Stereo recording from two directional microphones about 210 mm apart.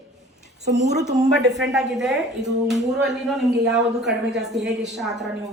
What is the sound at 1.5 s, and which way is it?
A man's voice, centre (ahead or behind).